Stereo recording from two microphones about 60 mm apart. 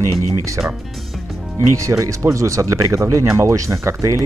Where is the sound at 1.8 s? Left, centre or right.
Right.